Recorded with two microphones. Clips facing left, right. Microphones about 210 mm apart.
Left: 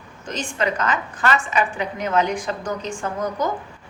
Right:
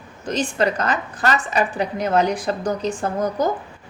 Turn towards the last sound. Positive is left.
turn(degrees=-35)  # may be behind; listen again after turning